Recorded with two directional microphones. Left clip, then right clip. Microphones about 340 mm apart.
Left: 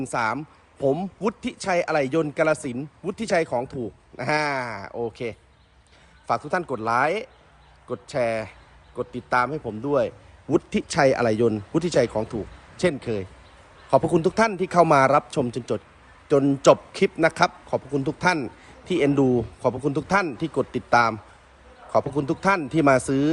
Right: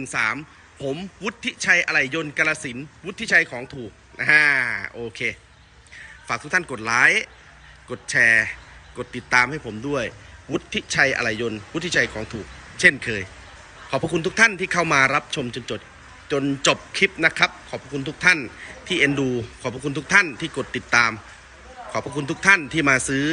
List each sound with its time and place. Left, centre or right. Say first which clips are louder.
0.1 s speech: right 3 dB; centre